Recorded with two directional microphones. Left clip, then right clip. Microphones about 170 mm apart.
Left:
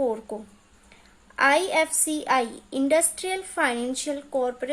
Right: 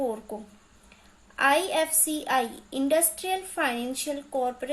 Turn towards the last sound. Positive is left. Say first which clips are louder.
# left 2 dB
turn(degrees=40)  # may be behind; listen again after turning